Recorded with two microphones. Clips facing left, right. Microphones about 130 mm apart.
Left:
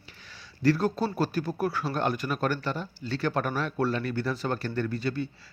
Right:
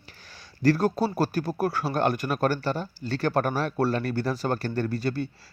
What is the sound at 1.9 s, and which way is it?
Speech, 55° right (ahead or behind).